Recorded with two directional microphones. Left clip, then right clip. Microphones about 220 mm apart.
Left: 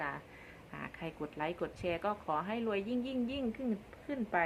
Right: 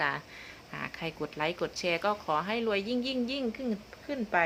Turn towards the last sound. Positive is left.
turn(degrees=-15)  # may be behind; listen again after turning